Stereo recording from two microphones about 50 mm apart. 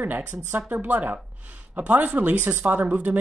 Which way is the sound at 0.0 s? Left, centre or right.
Right.